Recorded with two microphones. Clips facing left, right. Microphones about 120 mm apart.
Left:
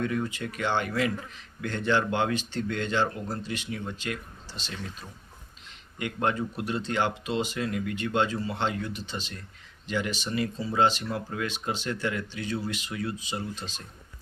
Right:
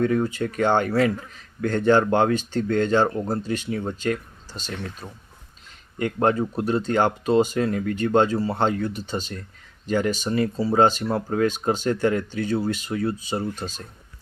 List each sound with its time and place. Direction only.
0.0 s speech: 40° right (ahead or behind)
6.0 s speech: 40° right (ahead or behind)
10.8 s speech: 45° right (ahead or behind)